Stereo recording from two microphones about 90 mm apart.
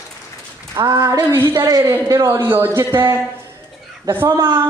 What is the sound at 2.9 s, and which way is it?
Speech, 25° right (ahead or behind).